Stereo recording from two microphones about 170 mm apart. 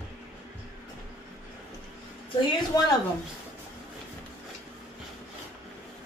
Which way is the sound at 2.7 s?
20° left (ahead or behind).